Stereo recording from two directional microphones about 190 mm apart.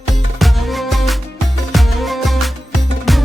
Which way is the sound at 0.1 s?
Centre (ahead or behind).